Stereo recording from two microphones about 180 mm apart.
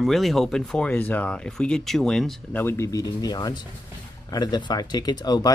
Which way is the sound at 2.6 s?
15° left (ahead or behind).